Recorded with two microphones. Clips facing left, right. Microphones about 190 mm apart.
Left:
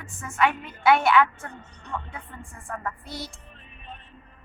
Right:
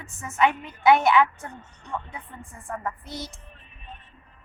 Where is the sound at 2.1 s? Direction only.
15° right (ahead or behind).